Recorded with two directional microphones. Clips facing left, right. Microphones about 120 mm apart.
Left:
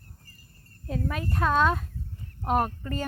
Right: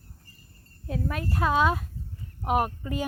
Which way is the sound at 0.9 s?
Centre (ahead or behind).